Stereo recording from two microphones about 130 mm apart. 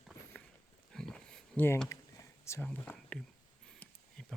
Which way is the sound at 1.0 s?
5° left (ahead or behind).